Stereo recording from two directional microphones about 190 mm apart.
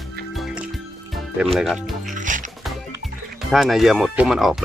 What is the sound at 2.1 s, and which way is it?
Music, 40° right (ahead or behind).